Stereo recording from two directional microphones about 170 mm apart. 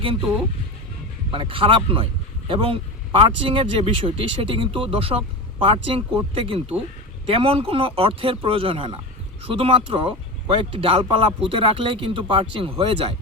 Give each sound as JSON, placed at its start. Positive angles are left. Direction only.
{"t": 1.3, "sound": "speech", "side_deg": -30}